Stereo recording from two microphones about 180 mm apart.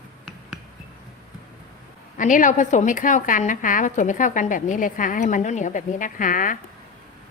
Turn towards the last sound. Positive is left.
turn(degrees=50)  # may be behind; listen again after turning